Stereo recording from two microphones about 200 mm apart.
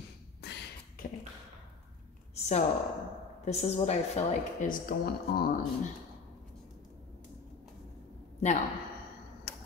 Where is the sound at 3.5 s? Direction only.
35° left (ahead or behind).